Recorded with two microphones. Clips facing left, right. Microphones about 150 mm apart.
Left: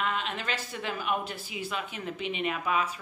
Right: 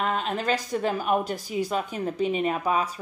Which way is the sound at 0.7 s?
40° right (ahead or behind).